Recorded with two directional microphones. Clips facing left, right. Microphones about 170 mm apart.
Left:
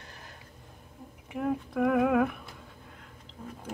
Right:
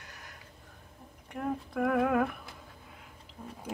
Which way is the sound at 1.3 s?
5° left (ahead or behind).